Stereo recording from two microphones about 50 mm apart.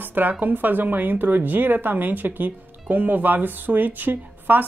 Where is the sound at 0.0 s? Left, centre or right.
Right.